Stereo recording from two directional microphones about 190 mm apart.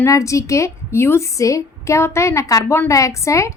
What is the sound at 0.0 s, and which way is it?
A woman's voice, 15° left (ahead or behind).